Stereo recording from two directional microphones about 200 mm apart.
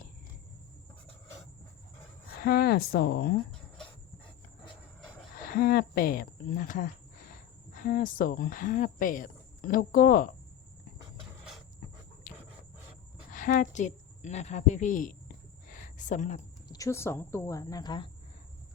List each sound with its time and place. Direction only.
2.4 s speech: 50° left (ahead or behind)
5.5 s speech: 50° left (ahead or behind)
12.3 s a sound: 40° left (ahead or behind)
13.3 s a woman's voice: 40° left (ahead or behind)
15.7 s a sound: 40° left (ahead or behind)
16.6 s speech: 15° left (ahead or behind)